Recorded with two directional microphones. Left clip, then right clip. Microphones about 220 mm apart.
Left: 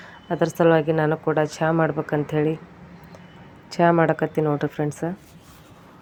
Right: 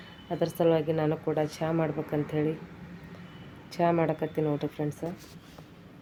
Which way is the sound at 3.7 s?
15° left (ahead or behind).